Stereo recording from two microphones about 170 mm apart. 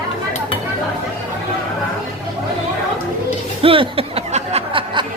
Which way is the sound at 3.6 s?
35° right (ahead or behind).